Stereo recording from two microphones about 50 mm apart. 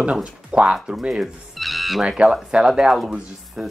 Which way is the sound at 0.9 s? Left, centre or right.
Centre.